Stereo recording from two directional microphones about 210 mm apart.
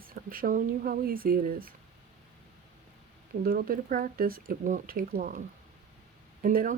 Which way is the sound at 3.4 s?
45° right (ahead or behind).